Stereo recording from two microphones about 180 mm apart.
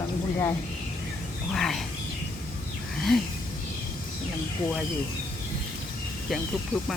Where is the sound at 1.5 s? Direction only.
Centre (ahead or behind).